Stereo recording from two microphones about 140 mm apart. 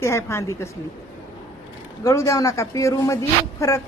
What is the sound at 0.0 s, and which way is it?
Speech, 20° left (ahead or behind).